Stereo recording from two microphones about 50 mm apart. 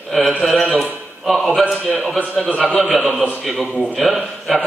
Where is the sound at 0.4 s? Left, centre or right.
Centre.